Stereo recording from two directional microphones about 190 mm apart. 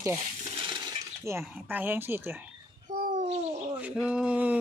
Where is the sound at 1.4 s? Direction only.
10° right (ahead or behind).